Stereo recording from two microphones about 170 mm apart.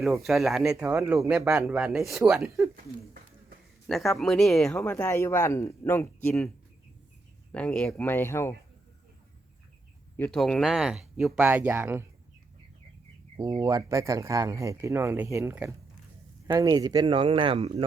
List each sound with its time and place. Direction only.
0.0 s speech: centre (ahead or behind)
3.8 s speech: centre (ahead or behind)
7.5 s speech: 5° left (ahead or behind)
10.2 s speech: 5° left (ahead or behind); by 12.0 s 15° right (ahead or behind)
13.3 s speech: 25° right (ahead or behind)